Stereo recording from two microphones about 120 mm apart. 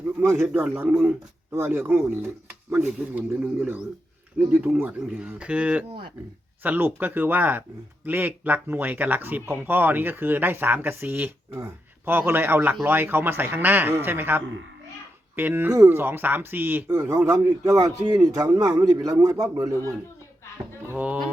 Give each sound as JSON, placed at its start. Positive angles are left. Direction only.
{"t": 0.2, "sound": "speech", "side_deg": -20}
{"t": 0.4, "sound": "speech", "side_deg": -10}
{"t": 20.9, "sound": "speech", "side_deg": -10}